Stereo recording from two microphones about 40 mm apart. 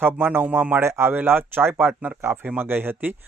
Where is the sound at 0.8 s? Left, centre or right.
Right.